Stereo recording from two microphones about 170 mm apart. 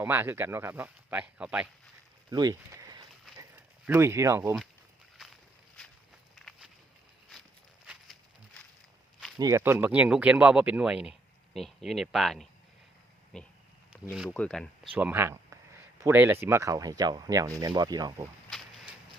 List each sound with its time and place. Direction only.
0.0 s speech: 10° right (ahead or behind)
2.3 s a sound: 25° right (ahead or behind)
3.5 s speech: 15° right (ahead or behind)
7.9 s a sound: centre (ahead or behind)
9.4 s speech: 15° right (ahead or behind); by 14.7 s 5° left (ahead or behind)
14.9 s speech: 10° right (ahead or behind)